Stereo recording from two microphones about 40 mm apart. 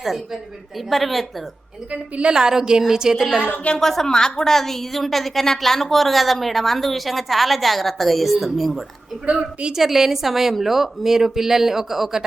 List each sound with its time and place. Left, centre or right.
0.9 s a woman's voice: centre
1.9 s a woman's voice: right
2.3 s speech: centre
3.8 s a woman's voice: centre
9.2 s a woman's voice: right
9.7 s speech: centre